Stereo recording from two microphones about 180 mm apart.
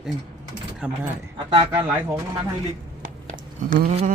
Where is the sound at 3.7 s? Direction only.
50° right (ahead or behind).